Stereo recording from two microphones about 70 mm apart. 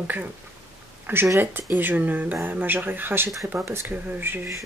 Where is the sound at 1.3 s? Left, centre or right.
Right.